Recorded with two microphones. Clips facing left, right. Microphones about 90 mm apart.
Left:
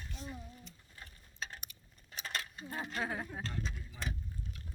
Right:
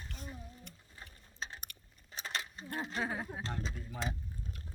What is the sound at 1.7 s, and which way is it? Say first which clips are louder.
Keys jangling: right 4 dB; 65° right (ahead or behind).